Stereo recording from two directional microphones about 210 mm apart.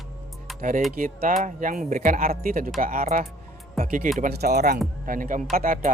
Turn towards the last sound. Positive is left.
turn(degrees=-40)  # may be behind; listen again after turning